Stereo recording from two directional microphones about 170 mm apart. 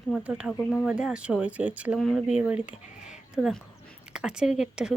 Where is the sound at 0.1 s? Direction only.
5° right (ahead or behind).